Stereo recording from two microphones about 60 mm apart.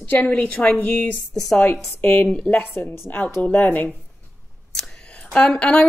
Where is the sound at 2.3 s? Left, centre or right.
Left.